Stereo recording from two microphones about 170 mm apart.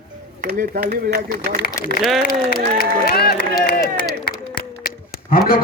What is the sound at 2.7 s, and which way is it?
Speech, 65° left (ahead or behind).